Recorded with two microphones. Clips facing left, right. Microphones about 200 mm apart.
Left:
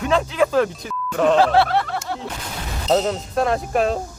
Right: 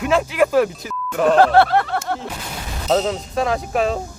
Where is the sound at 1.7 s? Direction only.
55° right (ahead or behind).